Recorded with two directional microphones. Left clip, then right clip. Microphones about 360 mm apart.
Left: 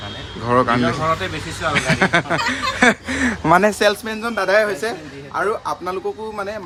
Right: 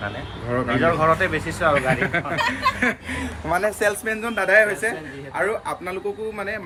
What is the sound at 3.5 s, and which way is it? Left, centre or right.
Speech, left.